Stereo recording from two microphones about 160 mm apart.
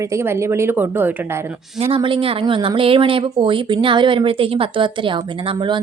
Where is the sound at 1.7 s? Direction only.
35° right (ahead or behind).